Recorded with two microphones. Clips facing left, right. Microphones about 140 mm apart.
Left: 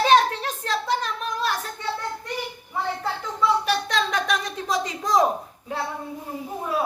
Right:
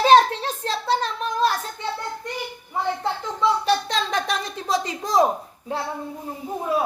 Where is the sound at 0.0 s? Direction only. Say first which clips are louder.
Right 3 dB; 30° right (ahead or behind).